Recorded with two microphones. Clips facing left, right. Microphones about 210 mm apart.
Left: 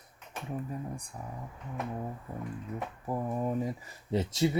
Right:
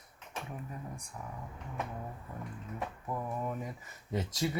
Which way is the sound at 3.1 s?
30° left (ahead or behind).